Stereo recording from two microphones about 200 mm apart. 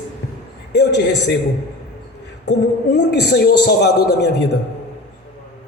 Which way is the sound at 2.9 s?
55° left (ahead or behind).